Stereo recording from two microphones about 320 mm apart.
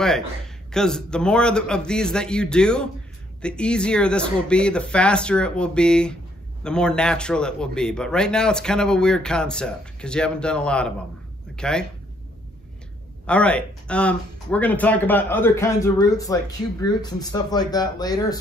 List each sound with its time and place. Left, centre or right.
0.7 s a man's voice: centre
13.3 s speech: centre